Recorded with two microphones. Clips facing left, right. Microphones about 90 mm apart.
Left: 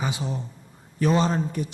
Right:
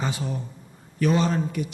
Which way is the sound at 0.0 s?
20° left (ahead or behind).